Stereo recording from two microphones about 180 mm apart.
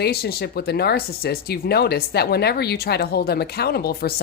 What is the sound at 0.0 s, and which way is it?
Speech, 60° left (ahead or behind).